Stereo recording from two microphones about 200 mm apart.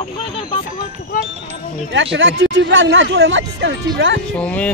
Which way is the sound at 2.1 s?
65° right (ahead or behind).